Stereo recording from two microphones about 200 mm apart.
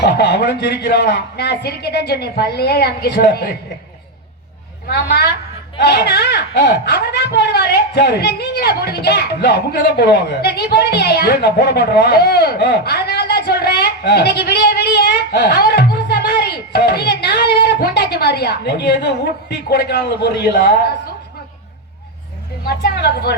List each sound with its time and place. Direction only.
0.0 s speech: 55° left (ahead or behind)
4.9 s a woman's voice: 55° left (ahead or behind)
22.6 s a woman's voice: 55° left (ahead or behind)